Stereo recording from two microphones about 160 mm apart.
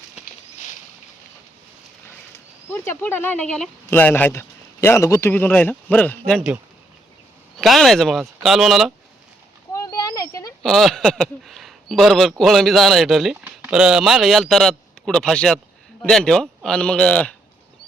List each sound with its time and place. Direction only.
2.6 s speech: 15° left (ahead or behind)
7.6 s speech: centre (ahead or behind)
9.7 s a sound: 20° left (ahead or behind)
10.6 s speech: centre (ahead or behind)